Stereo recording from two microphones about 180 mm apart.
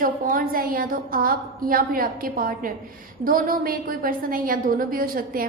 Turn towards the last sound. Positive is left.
turn(degrees=-55)  # may be behind; listen again after turning